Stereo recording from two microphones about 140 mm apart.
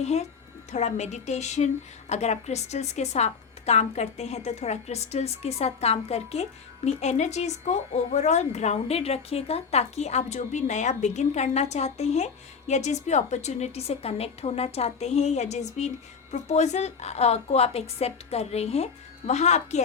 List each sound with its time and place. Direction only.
0.0 s a woman's voice: 50° left (ahead or behind)